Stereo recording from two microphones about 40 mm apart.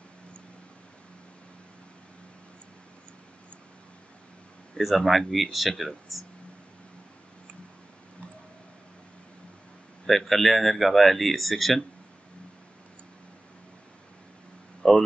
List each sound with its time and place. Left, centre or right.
4.9 s speech: centre
10.0 s speech: centre
14.8 s a sound: centre